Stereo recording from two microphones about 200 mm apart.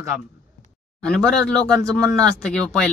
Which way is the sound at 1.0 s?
5° left (ahead or behind).